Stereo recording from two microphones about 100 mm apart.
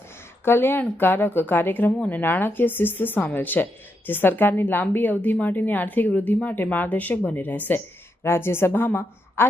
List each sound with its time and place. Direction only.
0.4 s a woman's voice: 25° left (ahead or behind)